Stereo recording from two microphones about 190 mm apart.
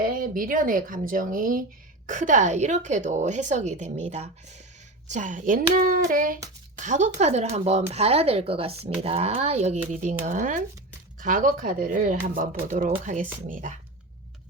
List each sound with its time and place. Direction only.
0.0 s speech: 50° right (ahead or behind)